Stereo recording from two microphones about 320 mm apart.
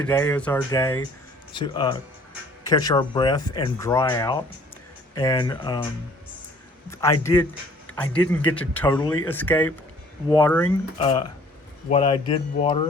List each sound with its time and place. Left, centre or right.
0.0 s speech: centre
6.9 s speech: centre
11.9 s speech: centre